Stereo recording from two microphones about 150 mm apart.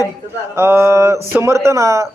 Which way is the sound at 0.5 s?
15° right (ahead or behind).